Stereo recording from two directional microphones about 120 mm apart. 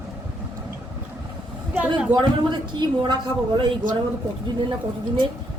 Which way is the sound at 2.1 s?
40° right (ahead or behind).